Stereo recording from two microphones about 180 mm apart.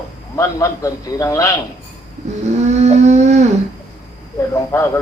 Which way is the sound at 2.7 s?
40° right (ahead or behind).